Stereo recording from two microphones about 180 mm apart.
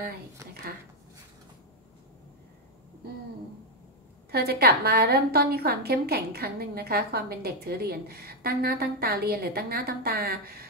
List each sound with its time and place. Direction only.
4.3 s a woman's voice: 60° right (ahead or behind)